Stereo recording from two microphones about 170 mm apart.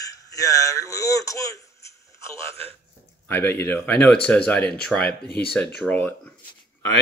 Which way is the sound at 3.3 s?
10° left (ahead or behind).